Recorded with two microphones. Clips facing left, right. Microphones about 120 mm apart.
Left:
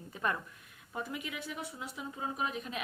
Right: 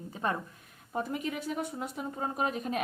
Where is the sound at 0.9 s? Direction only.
40° right (ahead or behind).